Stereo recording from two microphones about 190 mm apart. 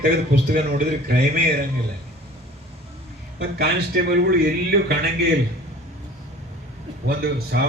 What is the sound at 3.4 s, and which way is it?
A man's voice, 55° right (ahead or behind).